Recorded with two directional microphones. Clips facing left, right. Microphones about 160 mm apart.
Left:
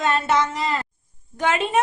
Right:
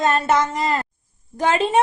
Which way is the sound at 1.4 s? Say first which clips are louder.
Right 3 dB; 35° right (ahead or behind).